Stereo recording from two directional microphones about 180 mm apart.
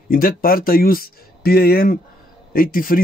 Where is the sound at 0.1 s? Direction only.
55° left (ahead or behind).